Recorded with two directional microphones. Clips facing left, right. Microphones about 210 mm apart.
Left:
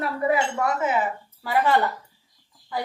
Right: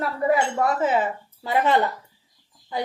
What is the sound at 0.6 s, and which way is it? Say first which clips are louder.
A woman's voice: right 2 dB; 30° right (ahead or behind).